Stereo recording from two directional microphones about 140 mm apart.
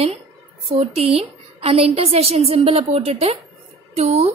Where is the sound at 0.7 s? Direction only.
45° right (ahead or behind).